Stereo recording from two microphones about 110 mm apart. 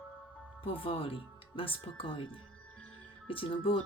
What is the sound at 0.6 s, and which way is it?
Speech, 55° left (ahead or behind).